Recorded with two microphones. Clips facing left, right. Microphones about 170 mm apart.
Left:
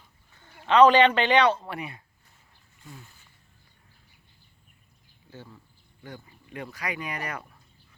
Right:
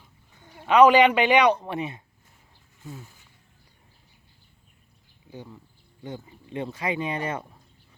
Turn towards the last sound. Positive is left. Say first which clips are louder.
# right 6 dB
turn(degrees=-25)  # may be behind; listen again after turning